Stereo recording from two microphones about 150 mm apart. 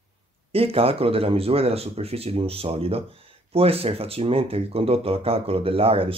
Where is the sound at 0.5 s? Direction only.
40° right (ahead or behind).